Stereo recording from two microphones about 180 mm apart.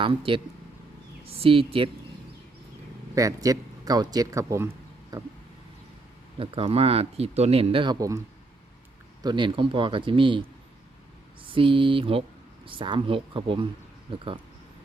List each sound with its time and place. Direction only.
0.0 s speech: 30° right (ahead or behind)
3.2 s speech: 20° right (ahead or behind)
5.1 s a sound: 20° right (ahead or behind)
6.4 s speech: 30° right (ahead or behind)
9.2 s speech: 25° right (ahead or behind)
11.5 s speech: 30° right (ahead or behind)